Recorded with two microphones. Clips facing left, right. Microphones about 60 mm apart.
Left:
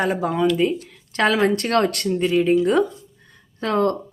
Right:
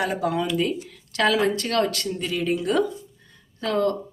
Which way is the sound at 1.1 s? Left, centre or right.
Left.